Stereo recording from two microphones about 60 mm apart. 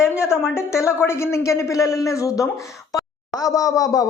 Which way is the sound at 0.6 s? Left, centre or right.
Left.